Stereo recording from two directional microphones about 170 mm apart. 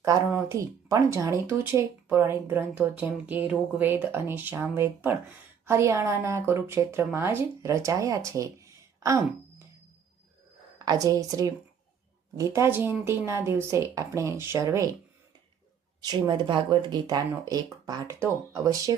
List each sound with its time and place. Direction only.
0.0 s speech: 20° right (ahead or behind)
10.8 s speech: 20° right (ahead or behind)
16.0 s speech: 25° right (ahead or behind)